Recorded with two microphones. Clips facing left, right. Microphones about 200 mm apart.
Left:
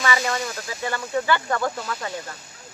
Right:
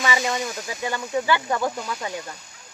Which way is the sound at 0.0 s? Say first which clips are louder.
Even; 15° right (ahead or behind).